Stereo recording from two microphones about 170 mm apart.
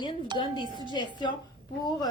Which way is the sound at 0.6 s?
25° right (ahead or behind).